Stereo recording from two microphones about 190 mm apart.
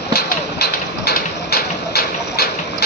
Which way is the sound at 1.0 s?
55° left (ahead or behind).